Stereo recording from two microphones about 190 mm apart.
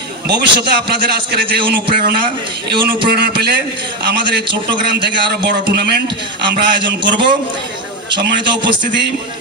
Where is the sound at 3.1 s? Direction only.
55° right (ahead or behind).